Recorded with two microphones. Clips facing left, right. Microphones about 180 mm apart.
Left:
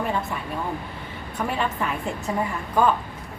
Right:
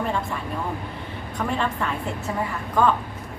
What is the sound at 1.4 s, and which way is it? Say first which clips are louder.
Speech: even; 5° left (ahead or behind).